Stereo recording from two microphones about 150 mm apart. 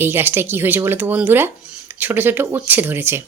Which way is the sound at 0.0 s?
15° right (ahead or behind).